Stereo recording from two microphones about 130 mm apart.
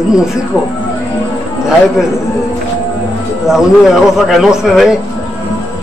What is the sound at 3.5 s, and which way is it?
A man's voice, 5° right (ahead or behind).